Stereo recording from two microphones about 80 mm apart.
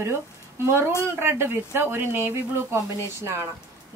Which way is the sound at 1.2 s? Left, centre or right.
Right.